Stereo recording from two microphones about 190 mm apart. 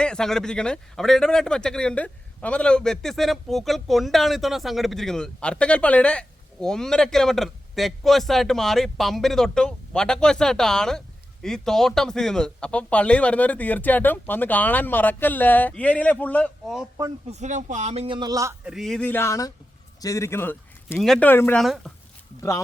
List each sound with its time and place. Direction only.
0.0 s speech: 5° left (ahead or behind)
17.2 s speech: 35° right (ahead or behind); by 18.5 s 20° right (ahead or behind)
18.6 s speech: centre (ahead or behind)